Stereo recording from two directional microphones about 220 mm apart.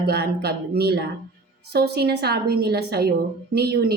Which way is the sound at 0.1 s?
45° right (ahead or behind).